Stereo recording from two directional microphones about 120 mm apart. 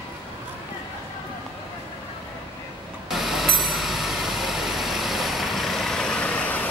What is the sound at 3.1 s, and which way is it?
Vehicle, centre (ahead or behind).